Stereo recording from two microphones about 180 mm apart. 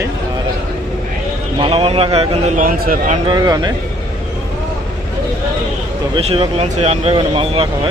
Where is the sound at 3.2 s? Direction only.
20° right (ahead or behind).